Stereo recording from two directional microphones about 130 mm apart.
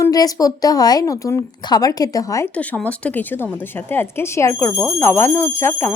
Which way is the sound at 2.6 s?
10° left (ahead or behind).